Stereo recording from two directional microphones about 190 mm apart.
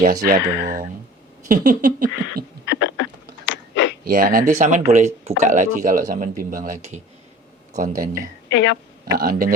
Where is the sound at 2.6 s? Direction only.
70° left (ahead or behind).